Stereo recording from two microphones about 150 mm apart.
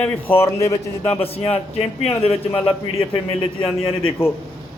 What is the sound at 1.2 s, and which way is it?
Speech, 40° left (ahead or behind).